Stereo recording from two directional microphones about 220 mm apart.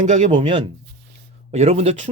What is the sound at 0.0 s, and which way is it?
Speech, 35° right (ahead or behind).